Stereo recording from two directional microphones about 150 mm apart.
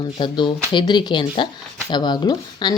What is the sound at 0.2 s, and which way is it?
Speech, 30° left (ahead or behind).